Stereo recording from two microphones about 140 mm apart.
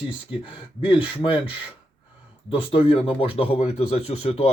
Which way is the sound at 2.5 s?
40° left (ahead or behind).